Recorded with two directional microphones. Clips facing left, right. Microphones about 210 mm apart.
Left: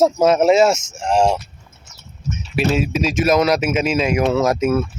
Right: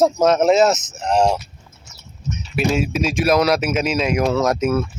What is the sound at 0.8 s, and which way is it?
Speech, 25° left (ahead or behind).